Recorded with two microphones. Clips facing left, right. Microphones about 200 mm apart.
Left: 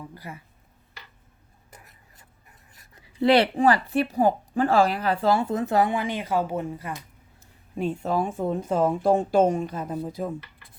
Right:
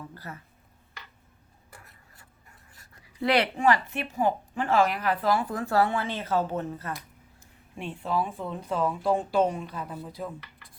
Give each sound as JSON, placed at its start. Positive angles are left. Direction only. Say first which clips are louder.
{"t": 0.0, "sound": "speech", "louder": "left 2 dB", "side_deg": 15}
{"t": 1.7, "sound": "writing", "louder": "left 1 dB", "side_deg": 20}
{"t": 2.7, "sound": "speech", "louder": "left 7 dB", "side_deg": 20}
{"t": 7.8, "sound": "speech", "louder": "left 4 dB", "side_deg": 40}